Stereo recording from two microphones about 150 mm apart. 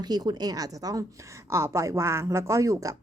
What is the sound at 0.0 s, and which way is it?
Speech, 25° right (ahead or behind).